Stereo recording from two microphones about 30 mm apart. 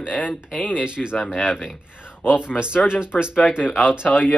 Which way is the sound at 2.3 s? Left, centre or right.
Right.